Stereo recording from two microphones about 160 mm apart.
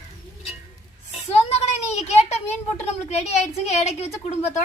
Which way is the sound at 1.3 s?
40° left (ahead or behind).